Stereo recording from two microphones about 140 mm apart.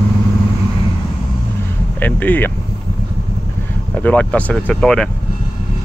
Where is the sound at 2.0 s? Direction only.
10° left (ahead or behind).